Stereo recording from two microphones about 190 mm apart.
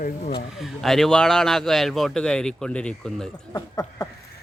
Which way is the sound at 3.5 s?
15° left (ahead or behind).